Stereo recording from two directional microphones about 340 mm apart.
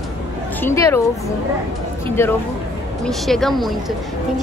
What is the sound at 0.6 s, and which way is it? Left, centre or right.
Speech, centre.